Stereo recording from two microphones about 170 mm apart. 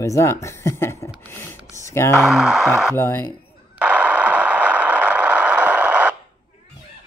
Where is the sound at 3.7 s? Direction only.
5° right (ahead or behind).